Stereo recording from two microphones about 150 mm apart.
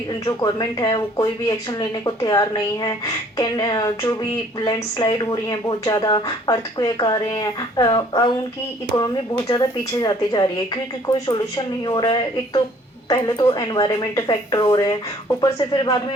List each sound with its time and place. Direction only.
0.1 s speech: 25° left (ahead or behind)